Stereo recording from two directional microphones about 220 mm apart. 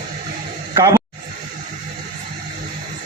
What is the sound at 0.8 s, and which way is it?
Speech, 15° right (ahead or behind).